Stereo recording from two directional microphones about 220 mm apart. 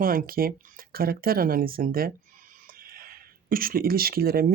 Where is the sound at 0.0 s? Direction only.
40° right (ahead or behind).